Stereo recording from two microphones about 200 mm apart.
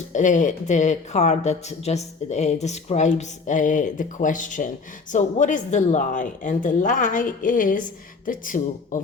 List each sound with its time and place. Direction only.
0.1 s speech: 40° left (ahead or behind)